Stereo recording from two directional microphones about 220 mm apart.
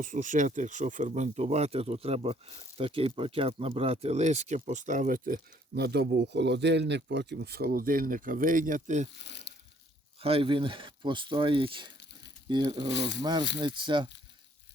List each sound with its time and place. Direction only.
0.0 s speech: 35° right (ahead or behind)
9.2 s speech: 50° left (ahead or behind)
10.2 s speech: 25° right (ahead or behind)
12.9 s speech: 50° left (ahead or behind)
13.2 s speech: 20° right (ahead or behind)